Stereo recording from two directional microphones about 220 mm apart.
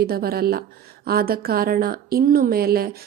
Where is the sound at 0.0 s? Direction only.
45° right (ahead or behind).